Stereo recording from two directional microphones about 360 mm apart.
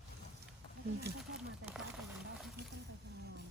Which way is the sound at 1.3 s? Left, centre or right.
Centre.